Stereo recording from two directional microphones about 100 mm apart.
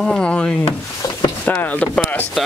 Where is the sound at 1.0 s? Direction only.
40° left (ahead or behind).